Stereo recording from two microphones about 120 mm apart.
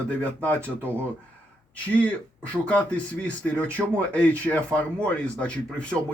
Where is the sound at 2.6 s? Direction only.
10° left (ahead or behind).